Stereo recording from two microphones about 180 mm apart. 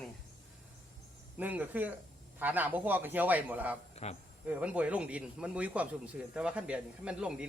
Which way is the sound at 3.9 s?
35° left (ahead or behind).